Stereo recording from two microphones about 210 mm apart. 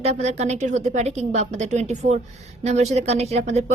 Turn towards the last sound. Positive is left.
turn(degrees=-30)  # may be behind; listen again after turning